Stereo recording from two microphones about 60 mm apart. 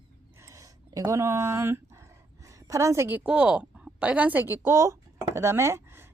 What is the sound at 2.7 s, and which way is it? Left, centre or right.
Speech, right.